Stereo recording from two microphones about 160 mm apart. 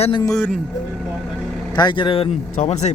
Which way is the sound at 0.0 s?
30° left (ahead or behind).